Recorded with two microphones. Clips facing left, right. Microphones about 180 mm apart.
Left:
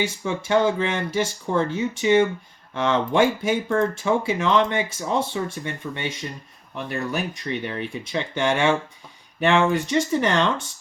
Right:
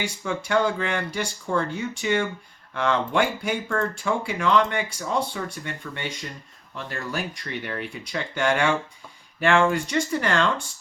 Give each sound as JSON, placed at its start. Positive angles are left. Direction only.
{"t": 0.0, "sound": "speech", "side_deg": 20}